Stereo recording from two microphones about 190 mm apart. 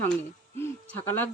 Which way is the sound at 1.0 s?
10° left (ahead or behind).